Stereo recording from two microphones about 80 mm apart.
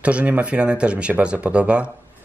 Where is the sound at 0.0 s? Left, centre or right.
Centre.